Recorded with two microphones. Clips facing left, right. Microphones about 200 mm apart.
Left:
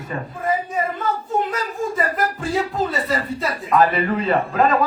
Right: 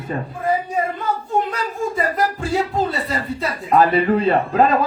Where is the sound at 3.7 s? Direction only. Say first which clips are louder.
Right 3 dB; 30° right (ahead or behind).